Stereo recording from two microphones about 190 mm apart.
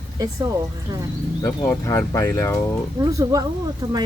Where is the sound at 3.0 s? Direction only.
20° right (ahead or behind).